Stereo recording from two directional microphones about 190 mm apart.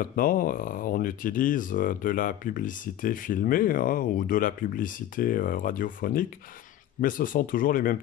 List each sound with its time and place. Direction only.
0.0 s speech: 50° left (ahead or behind)